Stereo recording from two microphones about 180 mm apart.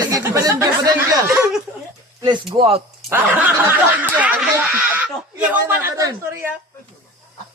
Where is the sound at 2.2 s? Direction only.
25° right (ahead or behind).